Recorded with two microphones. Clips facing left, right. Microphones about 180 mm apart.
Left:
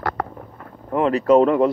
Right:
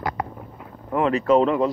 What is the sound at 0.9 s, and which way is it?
Speech, 35° left (ahead or behind).